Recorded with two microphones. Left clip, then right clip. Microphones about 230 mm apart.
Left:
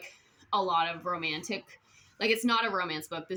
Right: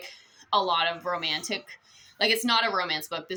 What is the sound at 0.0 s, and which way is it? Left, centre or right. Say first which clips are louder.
A woman's voice: right 5 dB; centre.